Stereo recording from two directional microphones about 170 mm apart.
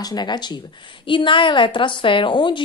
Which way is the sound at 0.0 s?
25° left (ahead or behind).